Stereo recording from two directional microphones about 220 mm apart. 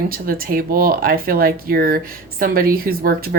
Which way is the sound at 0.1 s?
40° right (ahead or behind).